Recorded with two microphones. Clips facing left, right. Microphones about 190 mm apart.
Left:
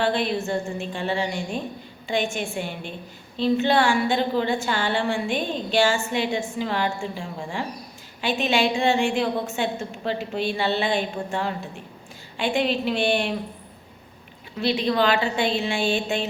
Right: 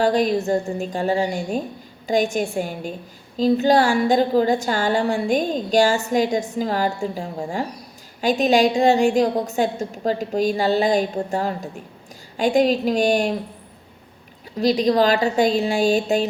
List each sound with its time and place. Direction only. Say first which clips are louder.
0.0 s a woman's voice: right 5 dB; 40° right (ahead or behind)
14.6 s a woman's voice: right 5 dB; 40° right (ahead or behind)